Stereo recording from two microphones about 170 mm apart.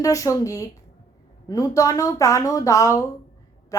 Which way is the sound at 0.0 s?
20° left (ahead or behind).